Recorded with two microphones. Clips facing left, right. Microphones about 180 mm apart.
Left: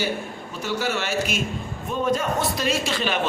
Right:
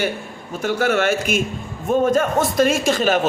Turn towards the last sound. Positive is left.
turn(degrees=-45)  # may be behind; listen again after turning